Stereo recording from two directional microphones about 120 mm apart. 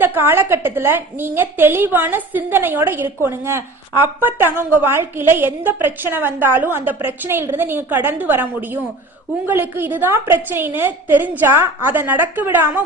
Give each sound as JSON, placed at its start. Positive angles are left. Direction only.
{"t": 0.0, "sound": "a woman's voice", "side_deg": -20}